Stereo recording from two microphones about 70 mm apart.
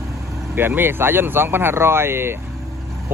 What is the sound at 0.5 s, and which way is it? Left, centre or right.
Speech, right.